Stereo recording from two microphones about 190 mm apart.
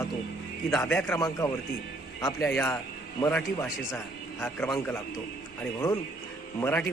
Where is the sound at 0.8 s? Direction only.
10° left (ahead or behind).